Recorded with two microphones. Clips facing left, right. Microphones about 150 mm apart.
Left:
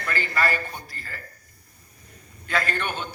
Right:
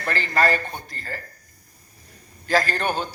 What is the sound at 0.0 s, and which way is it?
A man's voice, 40° right (ahead or behind).